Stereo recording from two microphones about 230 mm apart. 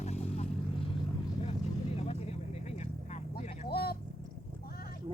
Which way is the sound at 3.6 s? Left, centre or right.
Left.